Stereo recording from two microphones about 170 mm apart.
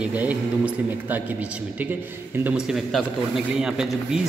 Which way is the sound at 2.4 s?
5° right (ahead or behind).